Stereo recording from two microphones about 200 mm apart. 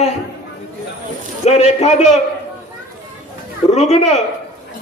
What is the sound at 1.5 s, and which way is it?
Speech, 35° left (ahead or behind).